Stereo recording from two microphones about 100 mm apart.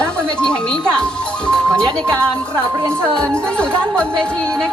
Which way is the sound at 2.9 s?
10° left (ahead or behind).